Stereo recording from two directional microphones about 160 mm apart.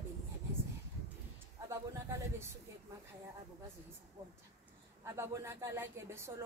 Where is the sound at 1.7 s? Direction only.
15° right (ahead or behind).